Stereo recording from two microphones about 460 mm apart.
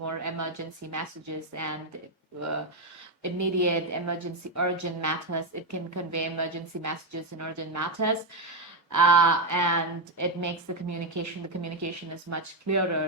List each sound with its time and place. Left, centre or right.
0.0 s a woman's voice: right
3.2 s a woman's voice: right